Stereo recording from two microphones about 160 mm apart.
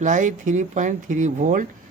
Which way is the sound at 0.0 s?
50° right (ahead or behind).